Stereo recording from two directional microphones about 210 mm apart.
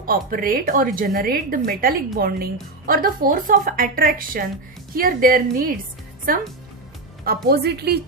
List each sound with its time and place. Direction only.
0.0 s a woman's voice: 40° right (ahead or behind)
7.4 s a woman's voice: 50° right (ahead or behind)